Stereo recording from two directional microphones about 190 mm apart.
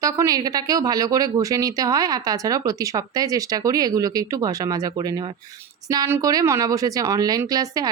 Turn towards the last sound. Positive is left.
turn(degrees=-20)  # may be behind; listen again after turning